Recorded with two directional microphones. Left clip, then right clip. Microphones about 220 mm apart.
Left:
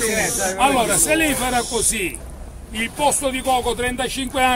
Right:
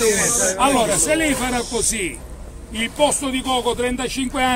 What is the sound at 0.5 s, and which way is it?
A man's voice, centre (ahead or behind).